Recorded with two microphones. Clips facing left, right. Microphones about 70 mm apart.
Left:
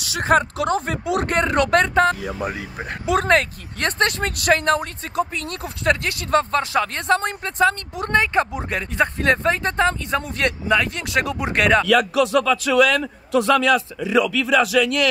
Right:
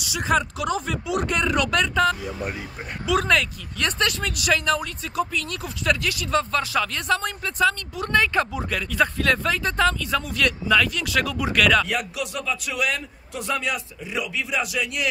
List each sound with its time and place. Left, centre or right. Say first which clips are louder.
0.0 s speech: left 4 dB; left
2.4 s speech: left 4 dB; left
3.1 s speech: left 3 dB; left
11.9 s a man's voice: left 11 dB; left